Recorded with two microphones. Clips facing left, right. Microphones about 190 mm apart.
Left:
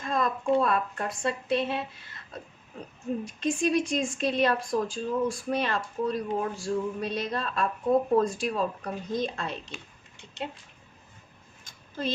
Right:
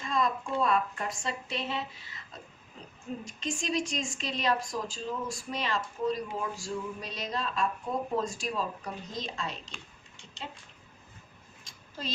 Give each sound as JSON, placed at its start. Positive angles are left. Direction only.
{"t": 0.0, "sound": "a woman's voice", "side_deg": 55}
{"t": 3.2, "sound": "a woman's voice", "side_deg": 60}
{"t": 10.2, "sound": "a sound", "side_deg": 55}